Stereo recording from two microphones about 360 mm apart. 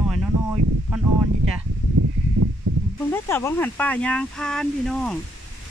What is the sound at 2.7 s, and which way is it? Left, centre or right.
Snake, right.